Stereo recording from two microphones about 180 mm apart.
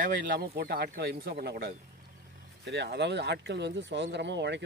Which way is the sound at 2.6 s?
75° right (ahead or behind).